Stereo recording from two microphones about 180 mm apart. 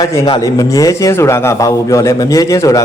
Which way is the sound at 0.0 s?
20° left (ahead or behind).